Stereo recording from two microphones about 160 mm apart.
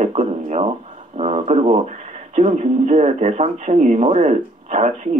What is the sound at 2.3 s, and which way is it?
Speech, 45° right (ahead or behind).